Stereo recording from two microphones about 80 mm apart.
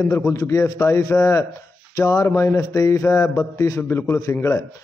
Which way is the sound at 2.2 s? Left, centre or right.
Left.